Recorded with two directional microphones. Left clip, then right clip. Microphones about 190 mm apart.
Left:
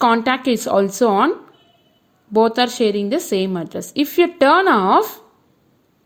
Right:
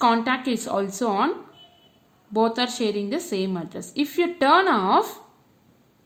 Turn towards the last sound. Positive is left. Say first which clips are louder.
# left 6 dB
turn(degrees=40)  # may be behind; listen again after turning